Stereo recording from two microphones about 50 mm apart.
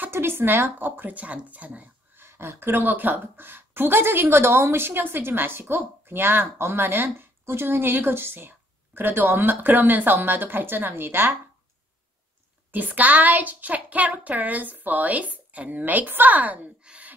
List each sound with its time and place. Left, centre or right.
0.1 s a woman's voice: right
2.1 s a woman's voice: right
12.7 s a child's voice: right
16.8 s a sound: right